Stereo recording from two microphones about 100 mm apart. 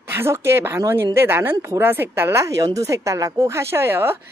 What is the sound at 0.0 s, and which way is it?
A woman's voice, 25° right (ahead or behind).